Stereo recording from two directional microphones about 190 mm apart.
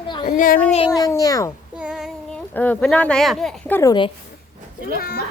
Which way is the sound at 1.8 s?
5° right (ahead or behind).